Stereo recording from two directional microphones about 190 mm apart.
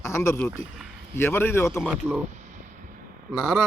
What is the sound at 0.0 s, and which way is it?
A man's voice, 15° left (ahead or behind).